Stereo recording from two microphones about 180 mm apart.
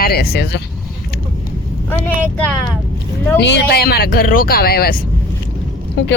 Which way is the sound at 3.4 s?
70° left (ahead or behind).